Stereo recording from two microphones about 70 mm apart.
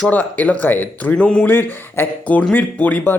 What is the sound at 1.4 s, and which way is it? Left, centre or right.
Speech, left.